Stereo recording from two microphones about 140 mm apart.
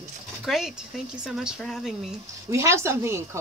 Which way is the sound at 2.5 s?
20° right (ahead or behind).